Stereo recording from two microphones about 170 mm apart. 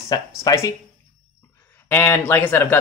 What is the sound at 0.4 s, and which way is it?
Speech, 20° left (ahead or behind).